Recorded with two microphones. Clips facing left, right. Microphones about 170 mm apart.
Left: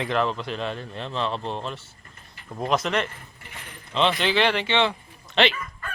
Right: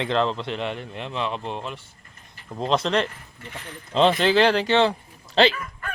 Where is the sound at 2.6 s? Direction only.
30° right (ahead or behind).